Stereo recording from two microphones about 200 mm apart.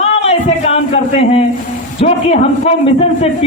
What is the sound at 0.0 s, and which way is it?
A man's voice, 30° left (ahead or behind).